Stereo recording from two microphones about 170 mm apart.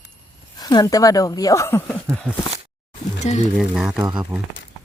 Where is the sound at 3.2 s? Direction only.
40° left (ahead or behind).